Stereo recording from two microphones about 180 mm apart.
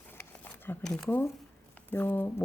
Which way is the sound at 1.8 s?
10° left (ahead or behind).